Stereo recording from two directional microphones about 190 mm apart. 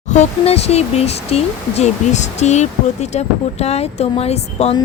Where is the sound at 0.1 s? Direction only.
35° left (ahead or behind).